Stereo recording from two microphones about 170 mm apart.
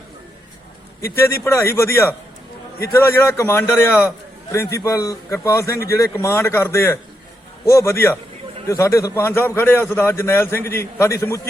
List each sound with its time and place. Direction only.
1.0 s a man's voice: 15° left (ahead or behind)